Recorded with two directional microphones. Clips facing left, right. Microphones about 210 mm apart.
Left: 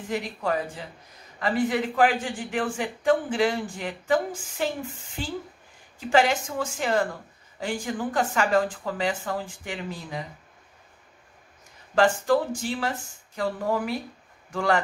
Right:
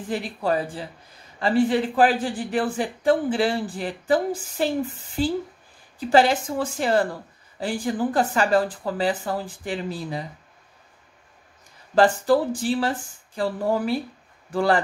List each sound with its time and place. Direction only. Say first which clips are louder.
0.1 s a man's voice: right 3 dB; 35° right (ahead or behind)
11.9 s a man's voice: right 3 dB; 35° right (ahead or behind)